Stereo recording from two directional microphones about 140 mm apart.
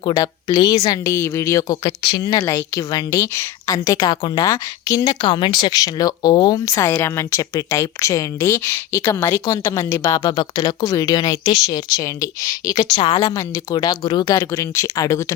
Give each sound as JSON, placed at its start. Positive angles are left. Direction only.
{"t": 0.0, "sound": "speech", "side_deg": 30}
{"t": 2.4, "sound": "speech", "side_deg": 20}